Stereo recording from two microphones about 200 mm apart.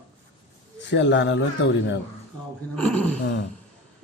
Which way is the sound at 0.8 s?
60° left (ahead or behind).